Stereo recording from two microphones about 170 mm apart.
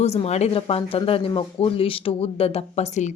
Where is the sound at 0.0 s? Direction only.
40° left (ahead or behind).